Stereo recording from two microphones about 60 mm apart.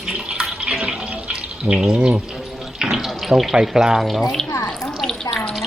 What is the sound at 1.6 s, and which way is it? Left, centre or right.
Speech, centre.